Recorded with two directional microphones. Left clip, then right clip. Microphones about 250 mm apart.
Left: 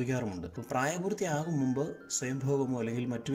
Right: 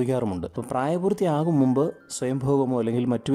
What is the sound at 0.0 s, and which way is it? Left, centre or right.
Speech, right.